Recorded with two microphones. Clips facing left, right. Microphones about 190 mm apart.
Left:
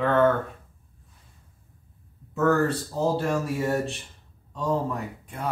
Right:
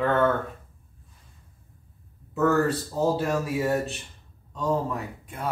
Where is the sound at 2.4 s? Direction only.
Centre (ahead or behind).